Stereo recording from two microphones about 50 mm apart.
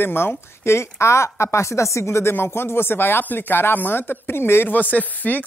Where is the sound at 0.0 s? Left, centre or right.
Left.